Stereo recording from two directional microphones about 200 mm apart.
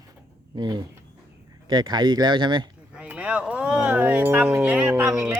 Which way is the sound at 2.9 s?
5° right (ahead or behind).